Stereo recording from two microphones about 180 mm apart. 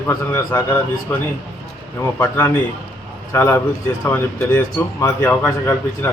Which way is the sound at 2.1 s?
10° left (ahead or behind).